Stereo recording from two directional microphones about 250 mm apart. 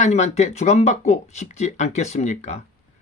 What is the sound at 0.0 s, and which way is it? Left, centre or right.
Speech, left.